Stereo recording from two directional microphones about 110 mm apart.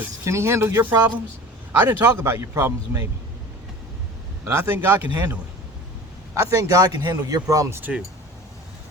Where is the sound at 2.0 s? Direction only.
25° right (ahead or behind).